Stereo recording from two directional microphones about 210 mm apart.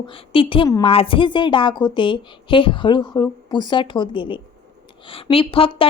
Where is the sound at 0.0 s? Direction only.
25° left (ahead or behind).